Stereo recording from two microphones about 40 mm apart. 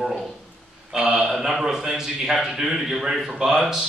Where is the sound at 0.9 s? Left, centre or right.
Centre.